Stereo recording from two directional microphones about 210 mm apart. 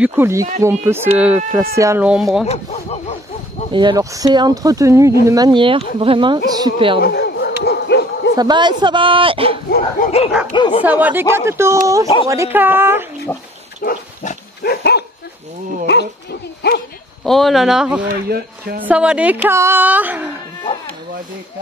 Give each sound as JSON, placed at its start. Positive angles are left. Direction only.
{"t": 0.0, "sound": "speech", "side_deg": -10}
{"t": 2.4, "sound": "speech", "side_deg": 30}
{"t": 3.7, "sound": "speech", "side_deg": -20}
{"t": 7.0, "sound": "bow-wow", "side_deg": 45}
{"t": 8.4, "sound": "speech", "side_deg": -20}
{"t": 9.7, "sound": "dog", "side_deg": 40}
{"t": 10.5, "sound": "speech", "side_deg": 20}
{"t": 10.8, "sound": "speech", "side_deg": -5}
{"t": 13.3, "sound": "speech", "side_deg": 10}
{"t": 13.8, "sound": "dog", "side_deg": 45}
{"t": 15.9, "sound": "bow-wow", "side_deg": 50}
{"t": 17.2, "sound": "speech", "side_deg": 0}